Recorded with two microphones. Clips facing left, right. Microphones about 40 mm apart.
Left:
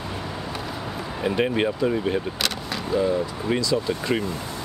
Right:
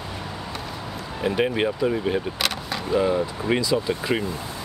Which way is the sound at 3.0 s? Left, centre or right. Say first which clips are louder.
Right 1 dB; right.